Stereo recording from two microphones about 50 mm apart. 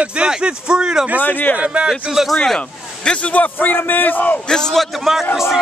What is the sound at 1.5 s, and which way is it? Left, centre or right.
Speech, right.